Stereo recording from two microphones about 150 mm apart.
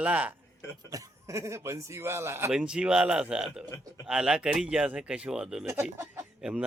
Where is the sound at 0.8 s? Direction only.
20° right (ahead or behind).